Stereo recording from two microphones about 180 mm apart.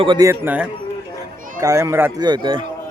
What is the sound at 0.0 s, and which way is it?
Speech, 25° right (ahead or behind).